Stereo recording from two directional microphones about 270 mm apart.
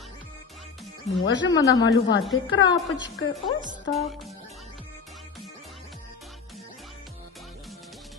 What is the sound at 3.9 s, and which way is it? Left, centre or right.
Speech, centre.